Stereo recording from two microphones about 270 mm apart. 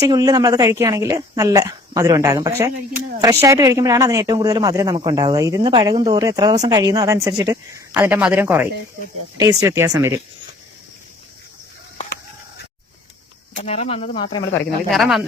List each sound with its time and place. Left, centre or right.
0.0 s speech: centre
13.7 s speech: left
14.8 s speech: centre